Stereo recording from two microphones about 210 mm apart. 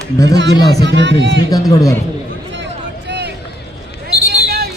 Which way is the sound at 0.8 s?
60° right (ahead or behind).